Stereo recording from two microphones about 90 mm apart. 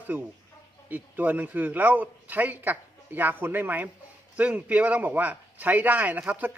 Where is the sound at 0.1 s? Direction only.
20° right (ahead or behind).